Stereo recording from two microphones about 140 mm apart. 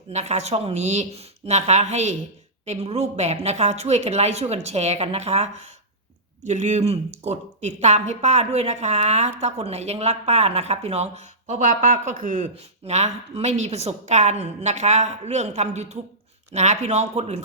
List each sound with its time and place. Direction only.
0.1 s a woman's voice: 55° right (ahead or behind); by 12.4 s 70° right (ahead or behind)
12.8 s a woman's voice: 50° right (ahead or behind)